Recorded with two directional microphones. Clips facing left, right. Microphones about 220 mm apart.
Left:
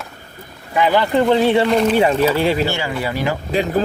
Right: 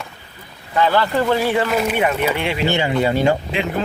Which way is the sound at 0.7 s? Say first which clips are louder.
Left 2 dB; 15° left (ahead or behind).